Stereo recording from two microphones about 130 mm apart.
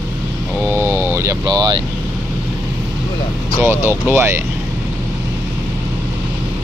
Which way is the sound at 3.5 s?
20° right (ahead or behind).